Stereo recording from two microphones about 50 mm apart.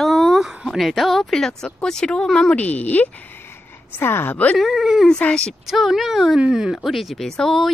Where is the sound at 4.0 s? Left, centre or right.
Left.